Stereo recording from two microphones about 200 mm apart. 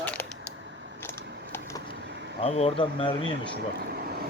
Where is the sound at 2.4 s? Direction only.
30° left (ahead or behind).